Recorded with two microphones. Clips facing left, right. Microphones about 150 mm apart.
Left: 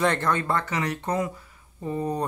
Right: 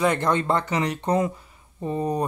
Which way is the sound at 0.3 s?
20° right (ahead or behind).